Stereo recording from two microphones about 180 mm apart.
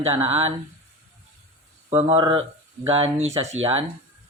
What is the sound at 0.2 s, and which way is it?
Speech, 35° right (ahead or behind).